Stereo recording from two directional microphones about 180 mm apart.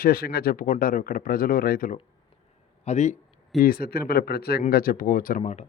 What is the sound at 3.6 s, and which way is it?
Speech, 55° left (ahead or behind).